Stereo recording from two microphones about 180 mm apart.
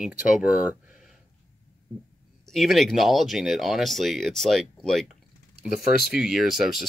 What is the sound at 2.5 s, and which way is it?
Speech, centre (ahead or behind).